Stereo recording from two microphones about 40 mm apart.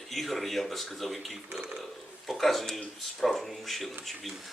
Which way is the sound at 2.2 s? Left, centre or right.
Centre.